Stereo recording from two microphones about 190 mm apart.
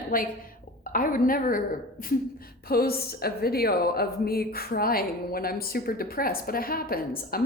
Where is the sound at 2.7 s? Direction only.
55° left (ahead or behind).